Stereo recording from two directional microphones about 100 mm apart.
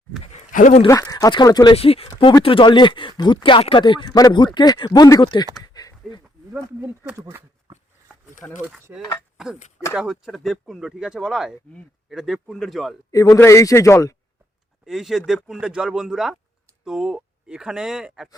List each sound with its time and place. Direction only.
0.2 s a sound: 90° left
0.9 s a man's voice: 40° left (ahead or behind)
1.7 s speech: 80° left
2.0 s speech: 55° left (ahead or behind); by 5.3 s 40° left (ahead or behind)
5.6 s a sound: 40° left (ahead or behind)
7.2 s a sound: 25° right (ahead or behind)
8.4 s speech: 15° left (ahead or behind)
8.9 s speech: 20° right (ahead or behind)
9.9 s speech: 5° right (ahead or behind)
13.1 s a man's voice: 35° left (ahead or behind)
14.8 s speech: 5° right (ahead or behind)